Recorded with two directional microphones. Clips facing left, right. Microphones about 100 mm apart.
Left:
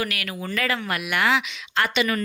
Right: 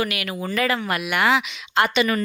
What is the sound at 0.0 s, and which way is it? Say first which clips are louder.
Speech: right 3 dB; 20° right (ahead or behind).